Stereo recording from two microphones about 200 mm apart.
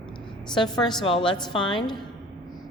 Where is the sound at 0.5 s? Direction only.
20° left (ahead or behind).